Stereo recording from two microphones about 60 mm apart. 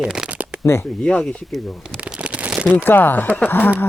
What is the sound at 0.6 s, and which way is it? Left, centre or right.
Speech, left.